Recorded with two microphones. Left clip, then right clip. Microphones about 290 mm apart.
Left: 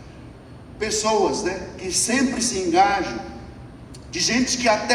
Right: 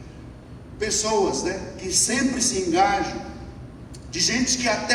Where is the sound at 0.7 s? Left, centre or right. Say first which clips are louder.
Left 2 dB; left.